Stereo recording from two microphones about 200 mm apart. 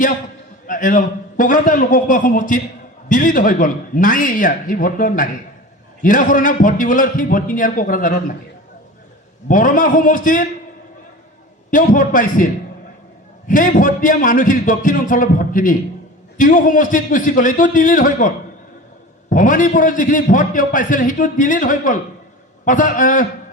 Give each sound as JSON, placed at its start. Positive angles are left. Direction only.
{"t": 0.7, "sound": "a man's voice", "side_deg": 40}
{"t": 9.5, "sound": "a man's voice", "side_deg": 40}
{"t": 11.7, "sound": "a man's voice", "side_deg": 40}
{"t": 13.5, "sound": "a man's voice", "side_deg": 40}